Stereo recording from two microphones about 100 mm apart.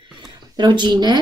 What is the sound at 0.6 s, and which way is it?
Speech, 50° right (ahead or behind).